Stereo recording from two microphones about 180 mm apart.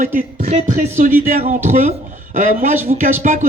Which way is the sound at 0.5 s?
40° right (ahead or behind).